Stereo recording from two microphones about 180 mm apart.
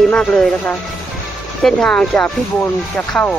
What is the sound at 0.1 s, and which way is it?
Speech, 5° left (ahead or behind).